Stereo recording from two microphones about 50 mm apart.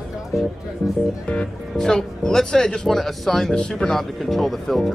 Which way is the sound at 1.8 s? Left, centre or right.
Centre.